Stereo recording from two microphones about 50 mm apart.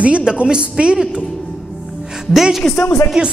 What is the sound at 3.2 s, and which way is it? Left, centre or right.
Speech, centre.